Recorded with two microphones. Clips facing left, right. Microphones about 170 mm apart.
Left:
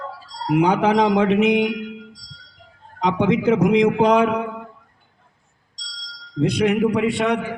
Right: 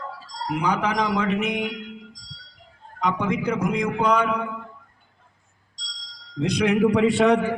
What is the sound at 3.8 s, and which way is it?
Speech, 20° left (ahead or behind).